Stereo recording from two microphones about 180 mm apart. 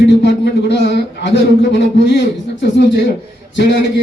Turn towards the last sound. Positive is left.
turn(degrees=75)  # may be behind; listen again after turning